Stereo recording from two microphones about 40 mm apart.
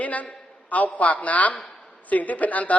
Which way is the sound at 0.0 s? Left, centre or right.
Left.